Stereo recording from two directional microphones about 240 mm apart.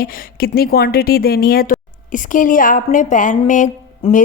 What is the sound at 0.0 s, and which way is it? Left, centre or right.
A woman's voice, left.